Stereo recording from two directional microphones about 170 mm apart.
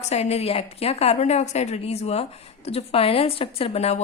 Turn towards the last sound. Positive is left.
turn(degrees=40)  # may be behind; listen again after turning